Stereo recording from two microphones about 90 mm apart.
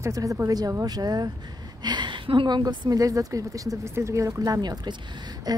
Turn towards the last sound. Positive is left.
turn(degrees=-45)  # may be behind; listen again after turning